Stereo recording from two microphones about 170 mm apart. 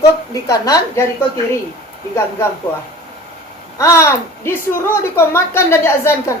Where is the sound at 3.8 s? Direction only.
15° left (ahead or behind).